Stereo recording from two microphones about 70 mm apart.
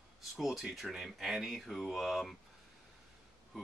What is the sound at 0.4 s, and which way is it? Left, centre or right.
Speech, centre.